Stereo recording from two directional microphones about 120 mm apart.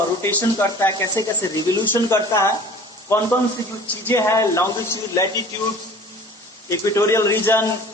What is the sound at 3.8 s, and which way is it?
Speech, 20° left (ahead or behind).